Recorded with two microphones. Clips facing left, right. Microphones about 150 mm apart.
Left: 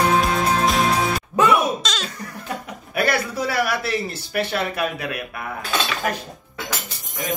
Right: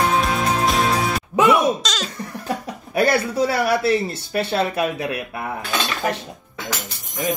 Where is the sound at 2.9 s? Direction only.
25° right (ahead or behind).